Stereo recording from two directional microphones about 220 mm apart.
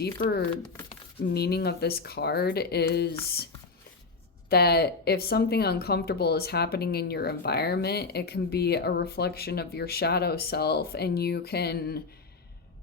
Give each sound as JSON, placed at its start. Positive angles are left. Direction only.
{"t": 0.0, "sound": "speech", "side_deg": 45}
{"t": 4.4, "sound": "speech", "side_deg": 45}